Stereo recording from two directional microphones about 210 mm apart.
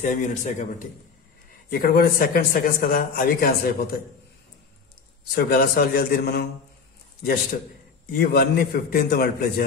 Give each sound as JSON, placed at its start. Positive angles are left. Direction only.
{"t": 0.0, "sound": "a man's voice", "side_deg": 35}
{"t": 1.7, "sound": "a man's voice", "side_deg": 45}
{"t": 5.3, "sound": "a man's voice", "side_deg": 45}
{"t": 8.1, "sound": "a man's voice", "side_deg": 45}